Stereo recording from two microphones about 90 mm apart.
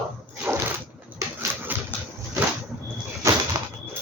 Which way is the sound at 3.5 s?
40° right (ahead or behind).